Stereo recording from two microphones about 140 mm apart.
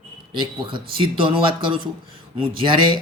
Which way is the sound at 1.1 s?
40° right (ahead or behind).